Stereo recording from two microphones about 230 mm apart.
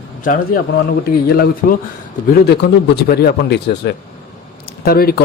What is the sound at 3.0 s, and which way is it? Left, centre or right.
A man's voice, left.